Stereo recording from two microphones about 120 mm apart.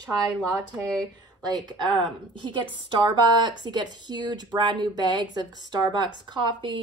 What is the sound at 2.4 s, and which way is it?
A woman's voice, 40° right (ahead or behind).